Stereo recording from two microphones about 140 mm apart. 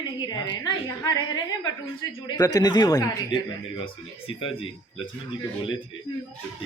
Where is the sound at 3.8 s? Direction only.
40° left (ahead or behind).